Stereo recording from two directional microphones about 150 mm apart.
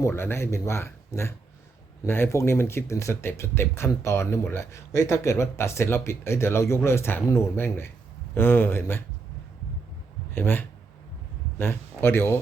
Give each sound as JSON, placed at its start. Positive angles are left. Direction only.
{"t": 0.0, "sound": "speech", "side_deg": 15}
{"t": 10.3, "sound": "speech", "side_deg": 15}